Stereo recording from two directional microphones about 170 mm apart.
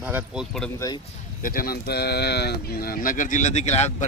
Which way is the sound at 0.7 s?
20° left (ahead or behind).